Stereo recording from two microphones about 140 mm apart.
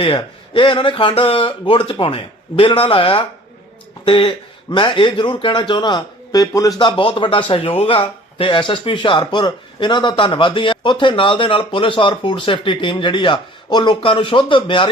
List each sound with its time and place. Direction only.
0.0 s a man's voice: 40° left (ahead or behind)